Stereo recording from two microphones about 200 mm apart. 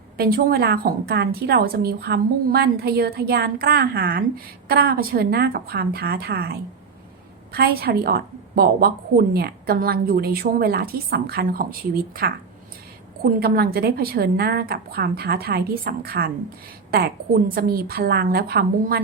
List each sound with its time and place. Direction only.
0.2 s a woman's voice: 45° right (ahead or behind)
13.4 s a woman's voice: 50° right (ahead or behind)